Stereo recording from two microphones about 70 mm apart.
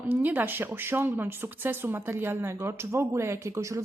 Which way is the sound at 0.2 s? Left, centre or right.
Right.